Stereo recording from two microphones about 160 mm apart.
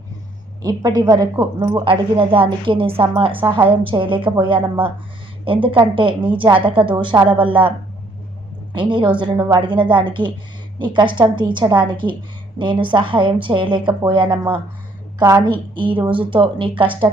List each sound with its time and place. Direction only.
0.6 s a woman's voice: 25° right (ahead or behind)
5.6 s a woman's voice: 35° right (ahead or behind)
8.7 s a woman's voice: 30° right (ahead or behind)
15.2 s a woman's voice: 20° right (ahead or behind)
15.7 s a woman's voice: 30° right (ahead or behind)